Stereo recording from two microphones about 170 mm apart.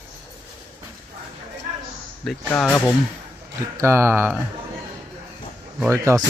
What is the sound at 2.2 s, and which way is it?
Speech, 5° left (ahead or behind).